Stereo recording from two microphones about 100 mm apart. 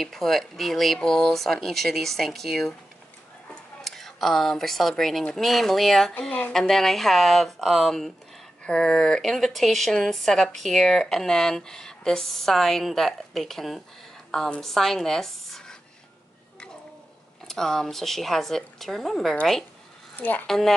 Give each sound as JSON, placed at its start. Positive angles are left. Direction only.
{"t": 0.0, "sound": "a woman's voice", "side_deg": 5}
{"t": 3.8, "sound": "a woman's voice", "side_deg": 0}
{"t": 6.7, "sound": "a woman's voice", "side_deg": 5}
{"t": 17.5, "sound": "a woman's voice", "side_deg": 5}
{"t": 20.2, "sound": "a woman's voice", "side_deg": 15}
{"t": 20.4, "sound": "a woman's voice", "side_deg": 5}